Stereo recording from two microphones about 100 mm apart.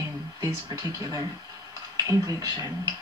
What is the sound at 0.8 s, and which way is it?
Speech, 35° right (ahead or behind).